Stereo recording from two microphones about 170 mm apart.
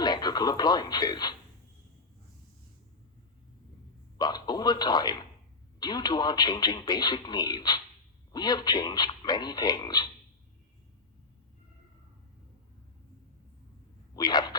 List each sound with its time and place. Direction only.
0.0 s speech: 25° left (ahead or behind)
4.2 s a man's voice: 25° left (ahead or behind)
14.2 s speech: 25° left (ahead or behind)